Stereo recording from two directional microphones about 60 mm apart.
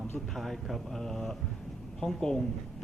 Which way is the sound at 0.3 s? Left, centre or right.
Centre.